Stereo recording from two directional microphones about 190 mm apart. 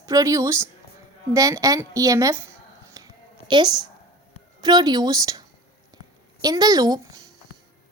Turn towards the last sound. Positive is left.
turn(degrees=-20)  # may be behind; listen again after turning